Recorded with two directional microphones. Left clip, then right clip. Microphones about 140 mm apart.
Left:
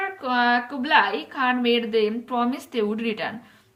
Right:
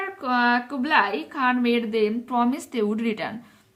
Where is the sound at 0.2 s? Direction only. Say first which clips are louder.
Even; 30° right (ahead or behind).